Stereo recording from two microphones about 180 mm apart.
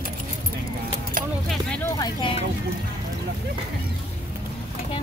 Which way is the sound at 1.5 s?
5° left (ahead or behind).